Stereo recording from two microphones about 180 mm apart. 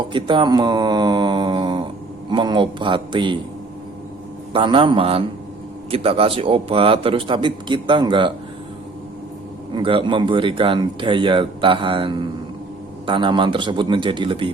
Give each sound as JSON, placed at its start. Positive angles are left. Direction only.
{"t": 0.1, "sound": "mantra", "side_deg": -25}
{"t": 2.3, "sound": "speech", "side_deg": -25}
{"t": 4.5, "sound": "speech", "side_deg": -30}
{"t": 9.7, "sound": "speech", "side_deg": -30}